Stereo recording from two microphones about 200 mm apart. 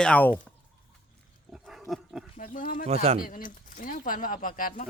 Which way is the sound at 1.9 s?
Centre (ahead or behind).